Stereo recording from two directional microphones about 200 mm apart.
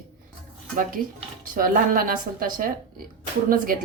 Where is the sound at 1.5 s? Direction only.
45° right (ahead or behind).